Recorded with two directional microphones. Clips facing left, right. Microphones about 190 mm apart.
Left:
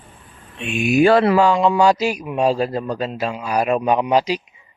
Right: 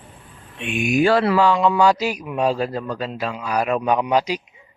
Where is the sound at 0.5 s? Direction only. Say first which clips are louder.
Left 1 dB; 15° right (ahead or behind).